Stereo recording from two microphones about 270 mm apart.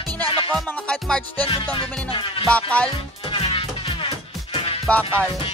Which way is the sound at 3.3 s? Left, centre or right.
Centre.